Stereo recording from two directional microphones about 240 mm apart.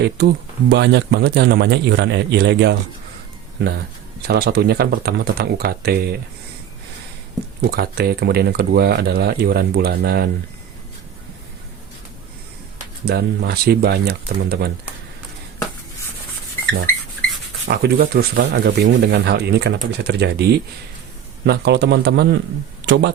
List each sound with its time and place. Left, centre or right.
0.2 s speech: right
7.6 s speech: right
13.1 s speech: right
17.7 s speech: right